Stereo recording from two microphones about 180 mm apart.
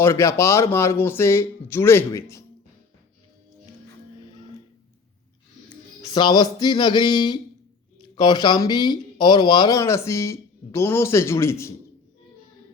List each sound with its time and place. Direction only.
0.0 s speech: 15° left (ahead or behind)
5.6 s speech: 25° left (ahead or behind)